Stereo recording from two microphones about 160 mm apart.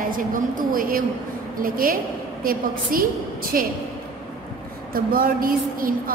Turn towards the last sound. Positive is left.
turn(degrees=-65)  # may be behind; listen again after turning